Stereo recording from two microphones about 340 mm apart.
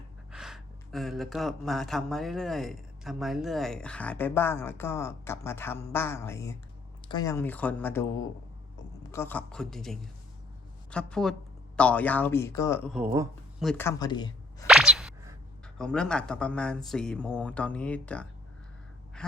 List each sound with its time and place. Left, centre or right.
0.3 s speech: centre
14.7 s speech: centre